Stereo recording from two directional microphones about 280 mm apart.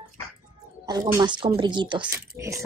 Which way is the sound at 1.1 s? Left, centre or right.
Centre.